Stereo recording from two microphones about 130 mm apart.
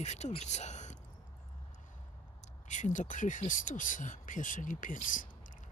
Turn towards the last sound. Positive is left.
turn(degrees=90)